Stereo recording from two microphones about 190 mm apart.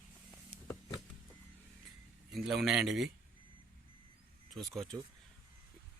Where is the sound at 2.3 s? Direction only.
Centre (ahead or behind).